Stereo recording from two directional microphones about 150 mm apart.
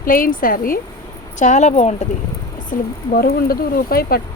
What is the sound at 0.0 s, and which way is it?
Speech, 70° left (ahead or behind).